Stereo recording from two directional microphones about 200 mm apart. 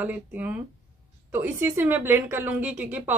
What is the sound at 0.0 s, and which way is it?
A woman's voice, 10° right (ahead or behind).